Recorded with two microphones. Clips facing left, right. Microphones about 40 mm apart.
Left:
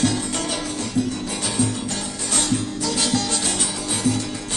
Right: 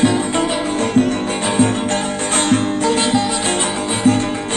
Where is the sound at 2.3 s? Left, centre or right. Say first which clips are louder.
Right 7 dB; right.